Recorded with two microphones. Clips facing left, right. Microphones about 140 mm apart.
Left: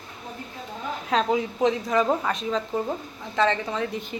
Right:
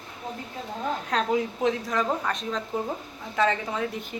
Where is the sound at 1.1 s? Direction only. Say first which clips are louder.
Left 4 dB; centre (ahead or behind).